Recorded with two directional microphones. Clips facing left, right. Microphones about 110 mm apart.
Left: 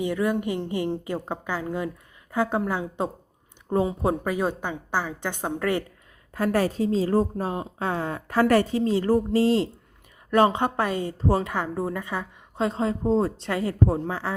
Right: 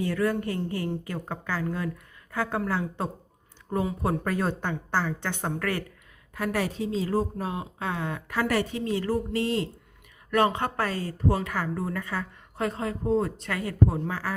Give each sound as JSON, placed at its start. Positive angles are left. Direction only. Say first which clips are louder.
{"t": 0.0, "sound": "a woman's voice", "louder": "left 2 dB", "side_deg": 15}
{"t": 6.3, "sound": "a woman's voice", "louder": "left 5 dB", "side_deg": 40}
{"t": 8.8, "sound": "a woman's voice", "louder": "left 6 dB", "side_deg": 25}